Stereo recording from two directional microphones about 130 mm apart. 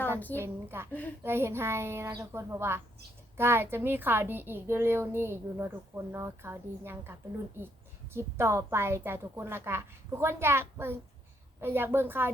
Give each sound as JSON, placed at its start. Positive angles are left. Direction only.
{"t": 0.3, "sound": "a child's voice", "side_deg": -20}